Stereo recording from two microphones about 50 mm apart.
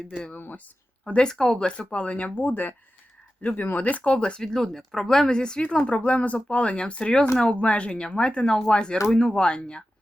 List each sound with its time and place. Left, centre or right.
0.3 s speech: left
1.0 s speech: centre
2.4 s speech: left; by 9.8 s centre